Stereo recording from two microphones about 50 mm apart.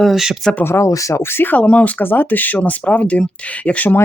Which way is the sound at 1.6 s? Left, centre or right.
Left.